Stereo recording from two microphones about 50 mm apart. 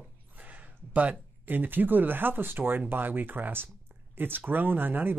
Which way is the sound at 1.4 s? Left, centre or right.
Right.